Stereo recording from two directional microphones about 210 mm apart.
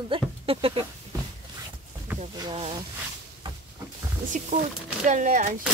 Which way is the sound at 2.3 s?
20° right (ahead or behind).